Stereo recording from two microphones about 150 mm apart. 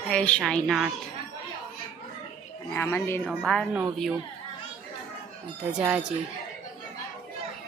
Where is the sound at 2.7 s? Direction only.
15° left (ahead or behind).